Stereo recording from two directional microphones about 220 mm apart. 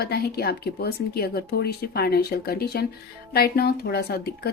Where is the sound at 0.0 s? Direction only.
45° left (ahead or behind).